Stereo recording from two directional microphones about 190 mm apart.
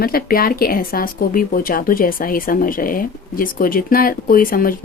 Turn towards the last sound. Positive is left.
turn(degrees=50)  # may be behind; listen again after turning